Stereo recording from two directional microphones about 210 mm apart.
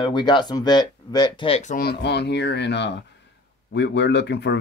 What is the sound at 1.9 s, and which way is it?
A woman's voice, 50° left (ahead or behind).